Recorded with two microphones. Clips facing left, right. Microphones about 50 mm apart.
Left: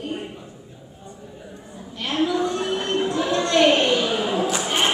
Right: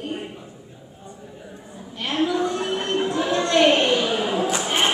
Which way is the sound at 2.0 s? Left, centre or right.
Centre.